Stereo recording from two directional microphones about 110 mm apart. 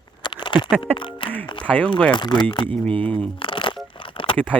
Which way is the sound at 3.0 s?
5° left (ahead or behind).